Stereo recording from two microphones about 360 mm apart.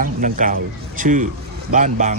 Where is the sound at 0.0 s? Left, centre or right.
Right.